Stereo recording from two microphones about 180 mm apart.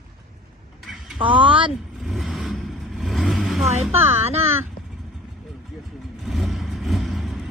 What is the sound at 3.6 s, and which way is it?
Speech, 40° right (ahead or behind).